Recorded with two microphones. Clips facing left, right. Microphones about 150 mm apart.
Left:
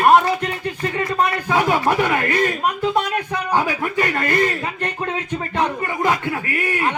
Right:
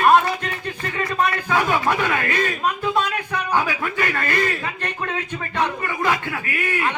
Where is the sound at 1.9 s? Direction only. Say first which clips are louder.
Left 3 dB; 15° left (ahead or behind).